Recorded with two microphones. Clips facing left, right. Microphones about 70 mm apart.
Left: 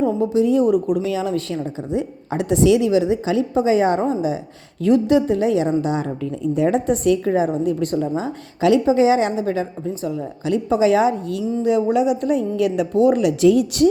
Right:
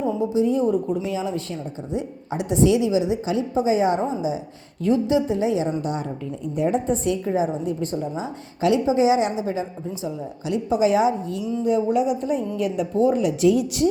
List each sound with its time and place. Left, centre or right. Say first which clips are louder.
0.0 s a woman's voice: left 4 dB; left
1.9 s a woman's voice: left 3 dB; left
5.8 s a woman's voice: left 5 dB; left
10.4 s a woman's voice: left 3 dB; left
11.6 s a woman's voice: left 3 dB; left
12.5 s a woman's voice: left 3 dB; left